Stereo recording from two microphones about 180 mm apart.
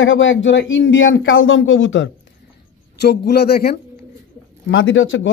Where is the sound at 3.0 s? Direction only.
65° left (ahead or behind).